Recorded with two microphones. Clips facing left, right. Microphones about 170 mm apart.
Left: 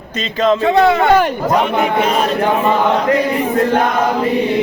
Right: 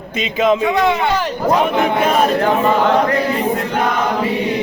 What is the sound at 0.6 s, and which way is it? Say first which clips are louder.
Speech: left 4 dB; 35° left (ahead or behind).